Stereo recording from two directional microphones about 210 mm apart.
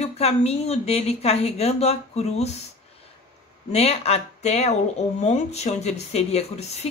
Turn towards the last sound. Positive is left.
turn(degrees=30)  # may be behind; listen again after turning